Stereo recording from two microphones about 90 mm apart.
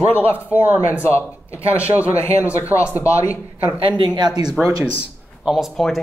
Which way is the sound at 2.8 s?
15° right (ahead or behind).